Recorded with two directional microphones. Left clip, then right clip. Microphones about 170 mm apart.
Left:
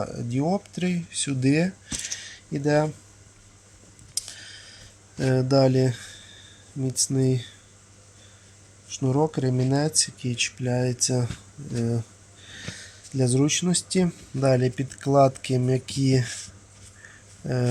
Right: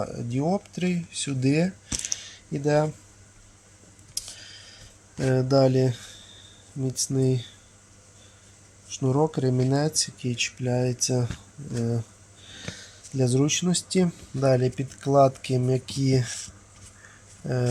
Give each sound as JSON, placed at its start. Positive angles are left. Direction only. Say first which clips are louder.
{"t": 0.0, "sound": "speech", "louder": "even", "side_deg": 5}
{"t": 0.3, "sound": "speech", "louder": "left 1 dB", "side_deg": -15}
{"t": 4.1, "sound": "a sound", "louder": "left 2 dB", "side_deg": -15}
{"t": 5.1, "sound": "speech", "louder": "even", "side_deg": 0}
{"t": 5.5, "sound": "a sound", "louder": "even", "side_deg": -15}
{"t": 6.8, "sound": "speech", "louder": "left 1 dB", "side_deg": -15}
{"t": 8.9, "sound": "speech", "louder": "even", "side_deg": -20}
{"t": 11.7, "sound": "speech", "louder": "left 1 dB", "side_deg": 5}
{"t": 11.9, "sound": "a sound", "louder": "left 1 dB", "side_deg": -15}
{"t": 14.5, "sound": "speech", "louder": "even", "side_deg": -15}
{"t": 17.4, "sound": "speech", "louder": "even", "side_deg": 5}